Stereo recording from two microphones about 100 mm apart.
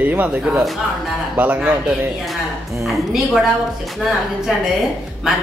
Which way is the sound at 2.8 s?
Centre (ahead or behind).